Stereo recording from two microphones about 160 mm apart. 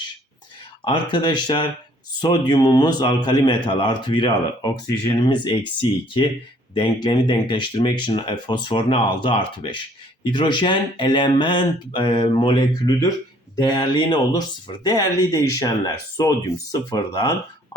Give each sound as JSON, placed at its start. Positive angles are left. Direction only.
{"t": 0.9, "sound": "speech", "side_deg": 30}
{"t": 6.7, "sound": "speech", "side_deg": 30}